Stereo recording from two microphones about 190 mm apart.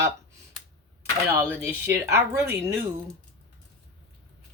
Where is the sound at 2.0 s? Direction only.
15° right (ahead or behind).